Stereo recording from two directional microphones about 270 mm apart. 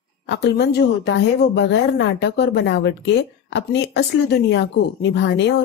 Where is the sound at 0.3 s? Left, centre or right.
Left.